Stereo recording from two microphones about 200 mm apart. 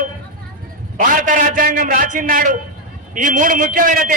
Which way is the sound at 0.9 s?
45° right (ahead or behind).